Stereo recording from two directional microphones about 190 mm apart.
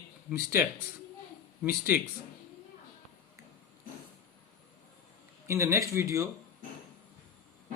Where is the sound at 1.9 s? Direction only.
10° right (ahead or behind).